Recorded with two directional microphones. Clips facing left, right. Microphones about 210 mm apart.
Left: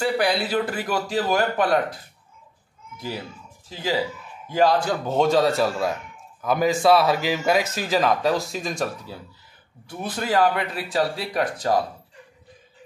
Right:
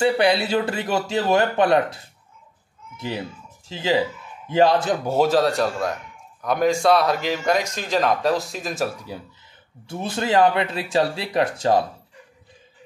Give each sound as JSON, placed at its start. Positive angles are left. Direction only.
{"t": 0.0, "sound": "speech", "side_deg": -25}
{"t": 3.6, "sound": "speech", "side_deg": -25}
{"t": 9.8, "sound": "speech", "side_deg": -25}